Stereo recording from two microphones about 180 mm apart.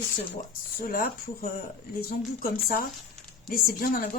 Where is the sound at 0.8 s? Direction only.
50° left (ahead or behind).